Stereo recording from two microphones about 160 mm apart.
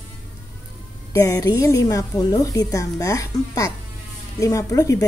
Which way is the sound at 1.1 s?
20° left (ahead or behind).